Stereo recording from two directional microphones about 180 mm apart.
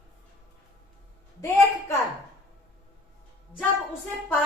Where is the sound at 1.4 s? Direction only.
15° left (ahead or behind).